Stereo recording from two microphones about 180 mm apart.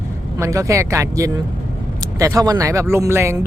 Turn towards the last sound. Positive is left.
turn(degrees=-15)  # may be behind; listen again after turning